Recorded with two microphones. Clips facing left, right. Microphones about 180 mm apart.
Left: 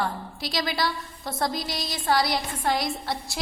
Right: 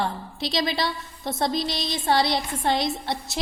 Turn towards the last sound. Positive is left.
turn(degrees=-20)  # may be behind; listen again after turning